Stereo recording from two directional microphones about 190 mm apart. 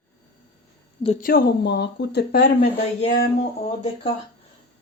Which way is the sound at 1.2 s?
50° left (ahead or behind).